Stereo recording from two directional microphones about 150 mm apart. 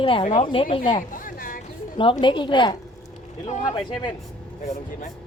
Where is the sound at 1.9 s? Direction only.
35° left (ahead or behind).